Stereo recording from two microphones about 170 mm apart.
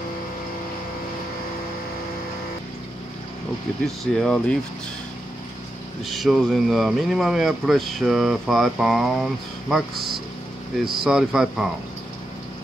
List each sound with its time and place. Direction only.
3.8 s speech: centre (ahead or behind)
6.0 s speech: centre (ahead or behind)